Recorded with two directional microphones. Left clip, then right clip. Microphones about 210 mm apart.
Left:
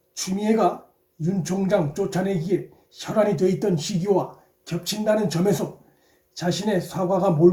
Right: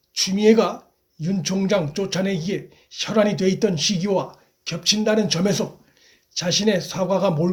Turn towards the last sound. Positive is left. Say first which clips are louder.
# right 1 dB
turn(degrees=-30)  # may be behind; listen again after turning